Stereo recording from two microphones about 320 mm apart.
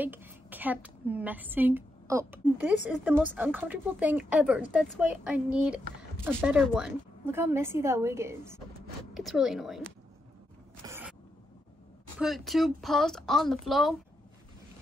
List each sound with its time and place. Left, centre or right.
0.0 s a woman's voice: centre
10.9 s a sound: centre
12.2 s a woman's voice: centre